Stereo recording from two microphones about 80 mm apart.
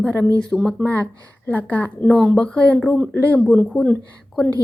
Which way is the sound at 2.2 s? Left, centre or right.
Centre.